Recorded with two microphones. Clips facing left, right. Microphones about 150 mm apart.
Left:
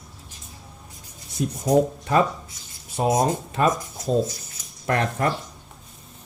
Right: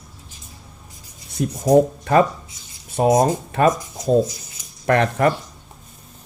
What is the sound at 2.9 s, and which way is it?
Speech, 55° right (ahead or behind).